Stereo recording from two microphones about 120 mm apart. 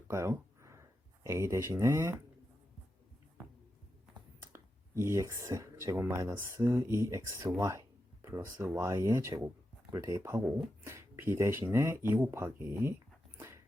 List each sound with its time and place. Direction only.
0.1 s a sound: 25° right (ahead or behind)
4.5 s speech: 20° right (ahead or behind)
13.3 s dog: 20° right (ahead or behind)